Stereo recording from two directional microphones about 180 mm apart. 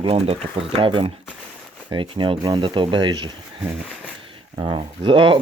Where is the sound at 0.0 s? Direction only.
30° right (ahead or behind).